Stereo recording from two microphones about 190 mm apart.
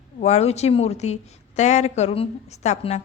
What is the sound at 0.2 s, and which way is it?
A woman's voice, 35° left (ahead or behind).